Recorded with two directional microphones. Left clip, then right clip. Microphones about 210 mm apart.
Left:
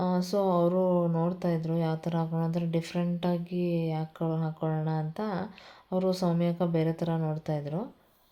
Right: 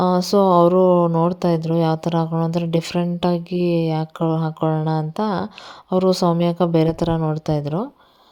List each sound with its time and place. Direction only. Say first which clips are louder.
0.0 s speech: right 12 dB; 40° right (ahead or behind)